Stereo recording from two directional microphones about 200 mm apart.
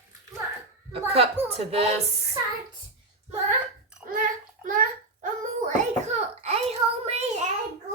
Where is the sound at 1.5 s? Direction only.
30° right (ahead or behind).